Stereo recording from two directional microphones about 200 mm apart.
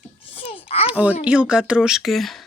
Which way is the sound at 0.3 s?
30° left (ahead or behind).